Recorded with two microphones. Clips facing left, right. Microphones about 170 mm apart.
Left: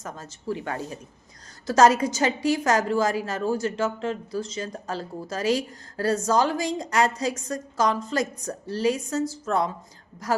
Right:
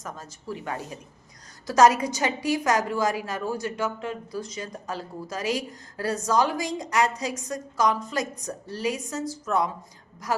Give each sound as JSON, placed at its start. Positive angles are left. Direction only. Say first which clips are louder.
{"t": 0.0, "sound": "a woman's voice", "louder": "left 3 dB", "side_deg": 30}
{"t": 1.6, "sound": "a woman's voice", "louder": "left 1 dB", "side_deg": 25}